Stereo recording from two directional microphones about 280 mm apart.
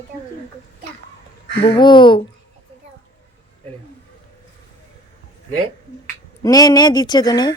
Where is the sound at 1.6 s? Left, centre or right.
Centre.